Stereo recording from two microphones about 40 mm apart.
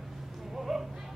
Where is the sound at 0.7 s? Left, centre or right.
Centre.